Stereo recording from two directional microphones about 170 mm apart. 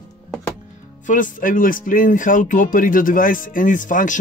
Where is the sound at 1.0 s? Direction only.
50° left (ahead or behind).